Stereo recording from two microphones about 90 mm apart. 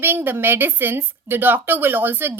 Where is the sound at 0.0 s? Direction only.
25° right (ahead or behind).